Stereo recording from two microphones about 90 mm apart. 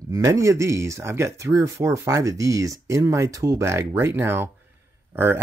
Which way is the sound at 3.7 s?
30° right (ahead or behind).